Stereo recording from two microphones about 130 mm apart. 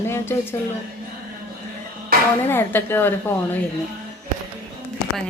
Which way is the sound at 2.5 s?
15° left (ahead or behind).